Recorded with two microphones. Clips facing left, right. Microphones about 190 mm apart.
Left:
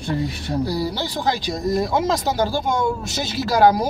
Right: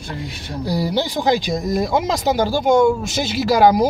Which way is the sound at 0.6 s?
15° right (ahead or behind).